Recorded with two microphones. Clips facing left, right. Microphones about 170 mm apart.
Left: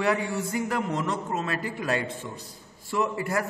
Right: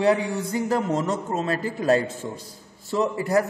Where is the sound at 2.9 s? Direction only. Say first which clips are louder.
Right 5 dB; 20° right (ahead or behind).